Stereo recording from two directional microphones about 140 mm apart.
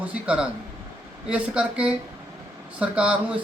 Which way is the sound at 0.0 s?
10° right (ahead or behind).